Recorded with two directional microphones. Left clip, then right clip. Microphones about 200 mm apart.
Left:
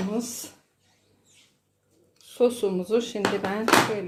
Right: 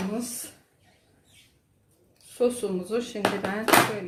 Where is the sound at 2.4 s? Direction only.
35° left (ahead or behind).